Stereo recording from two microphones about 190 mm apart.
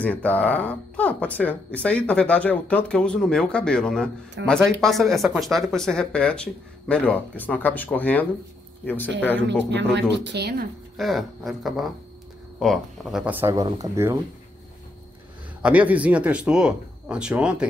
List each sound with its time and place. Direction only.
0.0 s speech: 10° left (ahead or behind)
10.1 s speech: 65° right (ahead or behind)
11.0 s speech: centre (ahead or behind); by 14.1 s 15° right (ahead or behind)
15.6 s speech: 10° right (ahead or behind)